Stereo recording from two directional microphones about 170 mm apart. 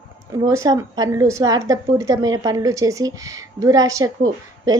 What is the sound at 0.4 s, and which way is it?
A woman's voice, 20° right (ahead or behind).